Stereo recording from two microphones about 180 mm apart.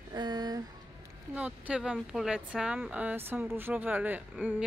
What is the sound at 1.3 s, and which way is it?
A woman's voice, 10° right (ahead or behind).